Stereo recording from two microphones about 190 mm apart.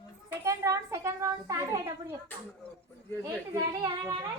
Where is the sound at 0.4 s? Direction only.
15° right (ahead or behind).